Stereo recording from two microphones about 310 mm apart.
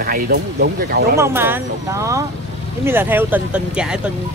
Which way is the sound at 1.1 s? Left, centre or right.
Centre.